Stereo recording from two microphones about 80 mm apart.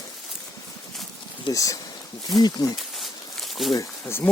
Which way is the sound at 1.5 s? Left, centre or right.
Left.